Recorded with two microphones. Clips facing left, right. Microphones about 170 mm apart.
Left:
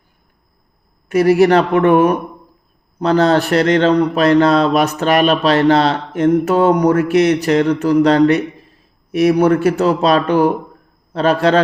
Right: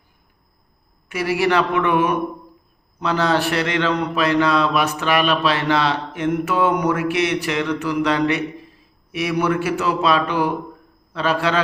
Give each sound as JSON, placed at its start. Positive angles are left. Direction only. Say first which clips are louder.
{"t": 1.0, "sound": "a man's voice", "louder": "left 9 dB", "side_deg": 45}